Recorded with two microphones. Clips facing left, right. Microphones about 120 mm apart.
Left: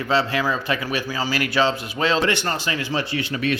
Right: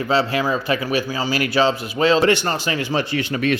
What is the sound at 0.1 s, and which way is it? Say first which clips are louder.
Speech: right 2 dB; 30° right (ahead or behind).